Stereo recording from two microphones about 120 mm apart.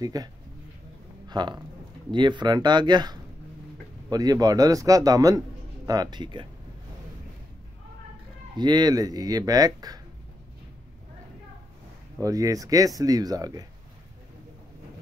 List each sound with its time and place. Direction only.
0.0 s speech: 30° right (ahead or behind)
8.5 s speech: 35° right (ahead or behind)
12.2 s speech: 30° right (ahead or behind)